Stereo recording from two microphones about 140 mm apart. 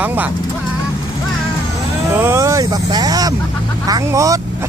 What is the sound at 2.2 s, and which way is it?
Speech, 20° right (ahead or behind).